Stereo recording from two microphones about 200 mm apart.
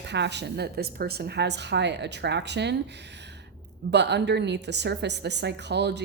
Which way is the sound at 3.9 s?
60° right (ahead or behind).